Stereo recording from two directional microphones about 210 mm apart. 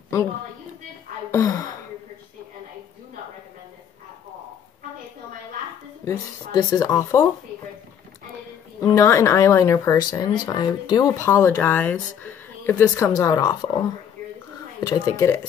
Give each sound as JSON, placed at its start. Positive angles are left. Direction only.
{"t": 1.3, "sound": "speech", "side_deg": 15}
{"t": 6.0, "sound": "speech", "side_deg": 15}
{"t": 8.8, "sound": "speech", "side_deg": 15}